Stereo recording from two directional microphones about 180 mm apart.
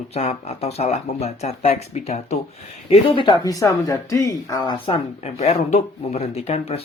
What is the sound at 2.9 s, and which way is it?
Speech, 25° left (ahead or behind).